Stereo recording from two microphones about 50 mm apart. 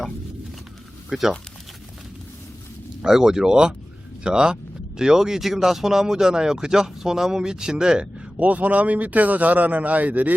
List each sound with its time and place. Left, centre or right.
1.1 s speech: centre
3.0 s speech: centre
8.4 s a man's voice: right